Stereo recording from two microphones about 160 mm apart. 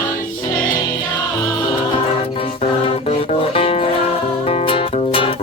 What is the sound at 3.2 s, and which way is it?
Music, 40° left (ahead or behind).